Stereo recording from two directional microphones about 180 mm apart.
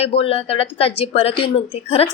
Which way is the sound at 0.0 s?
30° left (ahead or behind).